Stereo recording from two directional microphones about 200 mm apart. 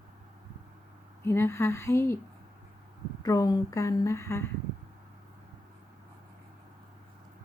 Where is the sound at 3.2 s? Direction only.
20° left (ahead or behind).